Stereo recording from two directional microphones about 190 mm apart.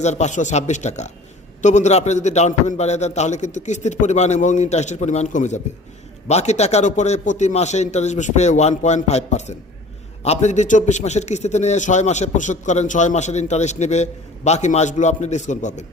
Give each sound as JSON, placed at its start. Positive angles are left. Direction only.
{"t": 0.0, "sound": "a man's voice", "side_deg": 35}